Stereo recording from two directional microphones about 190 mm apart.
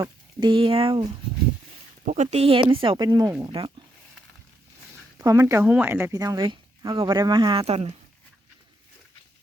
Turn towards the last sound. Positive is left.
turn(degrees=-35)  # may be behind; listen again after turning